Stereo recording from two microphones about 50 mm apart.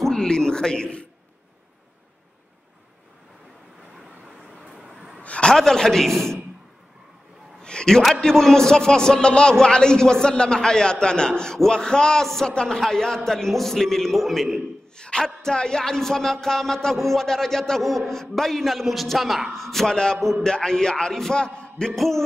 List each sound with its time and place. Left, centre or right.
0.0 s a man's voice: centre
5.2 s a sound: left
5.5 s a man's voice: centre
7.6 s a sound: centre
8.0 s a man's voice: centre
15.0 s a man's voice: centre
21.9 s a man's voice: centre